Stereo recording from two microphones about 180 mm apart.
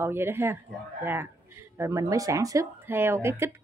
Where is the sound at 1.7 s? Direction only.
15° right (ahead or behind).